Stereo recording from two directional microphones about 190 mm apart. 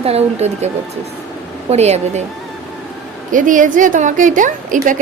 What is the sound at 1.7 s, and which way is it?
Speech, 35° right (ahead or behind).